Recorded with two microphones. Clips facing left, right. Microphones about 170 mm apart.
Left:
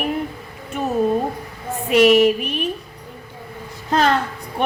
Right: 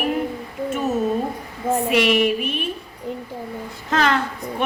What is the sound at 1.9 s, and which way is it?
Speech, 40° left (ahead or behind).